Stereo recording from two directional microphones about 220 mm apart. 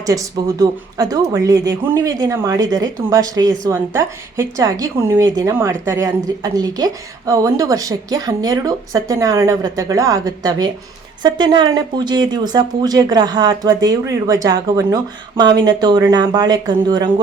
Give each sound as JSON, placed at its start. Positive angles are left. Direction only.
{"t": 0.0, "sound": "speech", "side_deg": -15}